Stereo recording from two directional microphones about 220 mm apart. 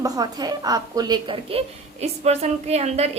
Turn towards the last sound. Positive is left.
turn(degrees=-30)  # may be behind; listen again after turning